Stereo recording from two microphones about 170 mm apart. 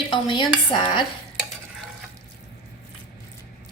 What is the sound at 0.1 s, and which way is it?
Dishes, 30° left (ahead or behind).